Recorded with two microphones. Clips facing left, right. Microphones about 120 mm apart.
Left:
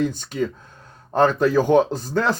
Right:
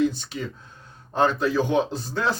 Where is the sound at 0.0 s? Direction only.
50° left (ahead or behind).